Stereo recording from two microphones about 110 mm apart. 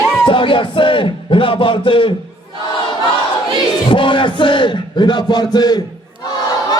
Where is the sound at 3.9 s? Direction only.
50° left (ahead or behind).